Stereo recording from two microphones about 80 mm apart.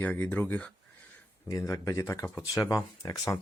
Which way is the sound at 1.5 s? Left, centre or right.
Left.